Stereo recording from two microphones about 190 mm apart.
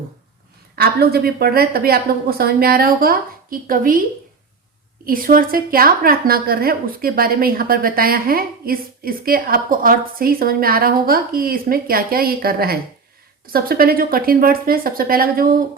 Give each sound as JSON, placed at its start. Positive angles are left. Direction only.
{"t": 0.8, "sound": "a woman's voice", "side_deg": -55}
{"t": 5.0, "sound": "a woman's voice", "side_deg": -50}